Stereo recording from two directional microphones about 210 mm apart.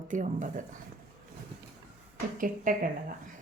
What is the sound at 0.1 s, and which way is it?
Speech, 35° right (ahead or behind).